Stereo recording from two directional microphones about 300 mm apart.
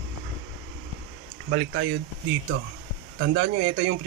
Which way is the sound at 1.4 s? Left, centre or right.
Right.